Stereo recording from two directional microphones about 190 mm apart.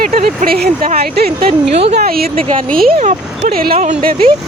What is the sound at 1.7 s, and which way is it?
Speech, 35° right (ahead or behind).